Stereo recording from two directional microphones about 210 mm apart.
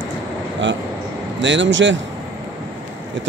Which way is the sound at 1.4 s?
60° right (ahead or behind).